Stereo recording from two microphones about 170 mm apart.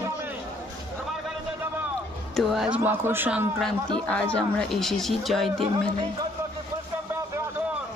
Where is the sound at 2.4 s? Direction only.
5° right (ahead or behind).